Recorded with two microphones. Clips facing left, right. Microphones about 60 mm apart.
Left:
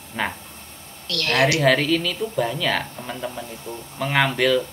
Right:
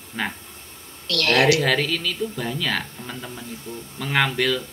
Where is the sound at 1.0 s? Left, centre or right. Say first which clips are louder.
Right 3 dB; right.